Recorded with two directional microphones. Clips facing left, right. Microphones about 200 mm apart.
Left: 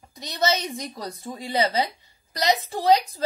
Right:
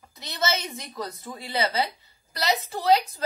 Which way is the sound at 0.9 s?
30° left (ahead or behind).